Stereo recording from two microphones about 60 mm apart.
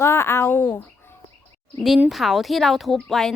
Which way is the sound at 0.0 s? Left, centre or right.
Left.